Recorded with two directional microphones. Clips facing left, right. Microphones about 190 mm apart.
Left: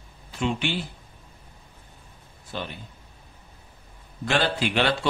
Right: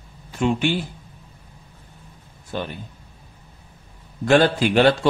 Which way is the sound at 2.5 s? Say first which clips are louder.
Right 5 dB; 45° right (ahead or behind).